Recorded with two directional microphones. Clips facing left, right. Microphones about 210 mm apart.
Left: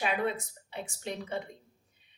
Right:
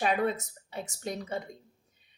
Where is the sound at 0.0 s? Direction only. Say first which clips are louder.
Right 3 dB; 40° right (ahead or behind).